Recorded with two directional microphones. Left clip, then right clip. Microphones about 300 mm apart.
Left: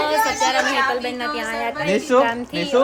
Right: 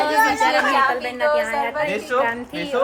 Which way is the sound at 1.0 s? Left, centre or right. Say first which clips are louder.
Right 5 dB; centre.